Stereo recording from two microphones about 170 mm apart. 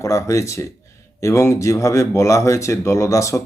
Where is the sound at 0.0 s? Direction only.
15° left (ahead or behind).